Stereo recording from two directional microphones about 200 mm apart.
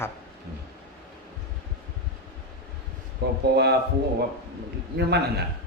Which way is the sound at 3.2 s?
50° right (ahead or behind).